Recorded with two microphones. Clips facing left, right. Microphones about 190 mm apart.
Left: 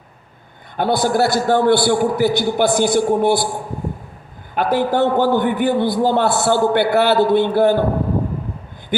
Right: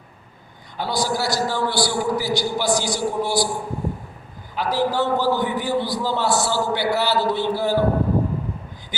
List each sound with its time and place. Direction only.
0.8 s a man's voice: 55° left (ahead or behind)
4.5 s a man's voice: 55° left (ahead or behind)
8.9 s owl: 55° left (ahead or behind)